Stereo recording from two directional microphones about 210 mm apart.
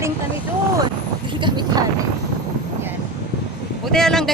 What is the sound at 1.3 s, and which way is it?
Speech, 20° right (ahead or behind).